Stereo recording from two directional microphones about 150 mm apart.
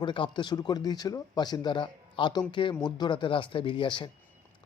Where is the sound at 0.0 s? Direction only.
30° left (ahead or behind).